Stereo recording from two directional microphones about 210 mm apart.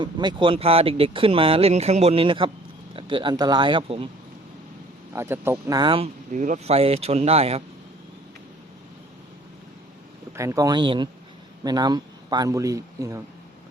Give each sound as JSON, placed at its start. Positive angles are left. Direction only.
{"t": 0.0, "sound": "speech", "side_deg": -20}
{"t": 5.1, "sound": "speech", "side_deg": -10}
{"t": 6.3, "sound": "speech", "side_deg": -35}
{"t": 10.3, "sound": "a man's voice", "side_deg": -15}